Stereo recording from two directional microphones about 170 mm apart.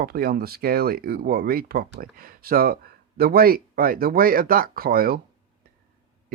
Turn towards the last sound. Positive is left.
turn(degrees=-60)  # may be behind; listen again after turning